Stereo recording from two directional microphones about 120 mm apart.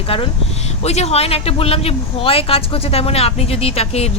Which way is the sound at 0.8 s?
65° left (ahead or behind).